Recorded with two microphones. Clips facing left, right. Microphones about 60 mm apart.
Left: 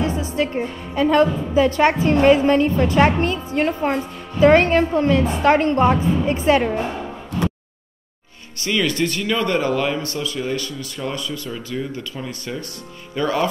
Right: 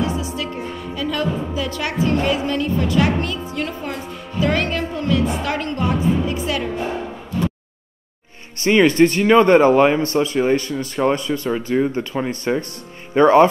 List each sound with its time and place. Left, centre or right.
0.0 s music: left
0.4 s a woman's voice: left
8.5 s speech: right